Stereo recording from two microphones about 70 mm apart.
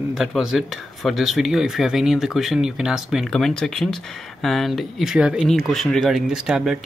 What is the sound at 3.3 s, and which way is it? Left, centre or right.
Speech, centre.